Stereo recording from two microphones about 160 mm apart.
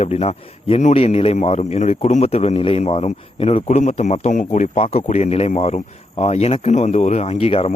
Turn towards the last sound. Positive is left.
turn(degrees=40)  # may be behind; listen again after turning